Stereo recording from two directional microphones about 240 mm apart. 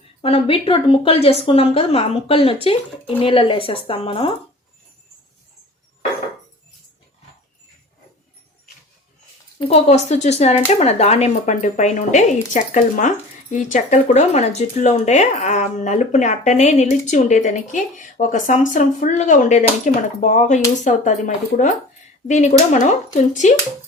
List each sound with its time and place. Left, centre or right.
0.2 s a woman's voice: left
9.6 s a woman's voice: left